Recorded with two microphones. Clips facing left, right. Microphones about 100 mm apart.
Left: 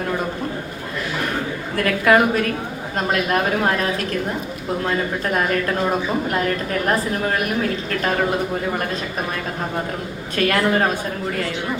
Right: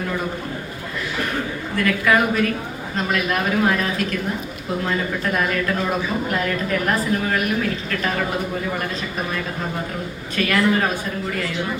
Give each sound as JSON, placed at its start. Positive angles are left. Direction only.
{"t": 1.7, "sound": "a woman's voice", "side_deg": 45}
{"t": 5.2, "sound": "a woman's voice", "side_deg": 35}
{"t": 10.3, "sound": "a woman's voice", "side_deg": 40}